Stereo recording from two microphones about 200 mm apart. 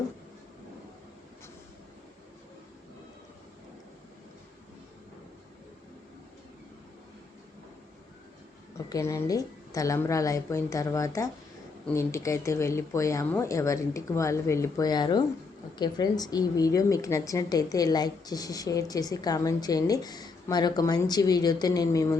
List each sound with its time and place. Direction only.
8.9 s a woman's voice: 15° left (ahead or behind)